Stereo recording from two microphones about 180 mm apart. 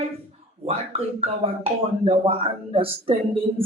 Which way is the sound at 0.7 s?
35° right (ahead or behind).